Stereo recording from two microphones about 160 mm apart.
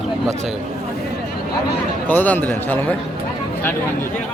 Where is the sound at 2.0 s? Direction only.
10° left (ahead or behind).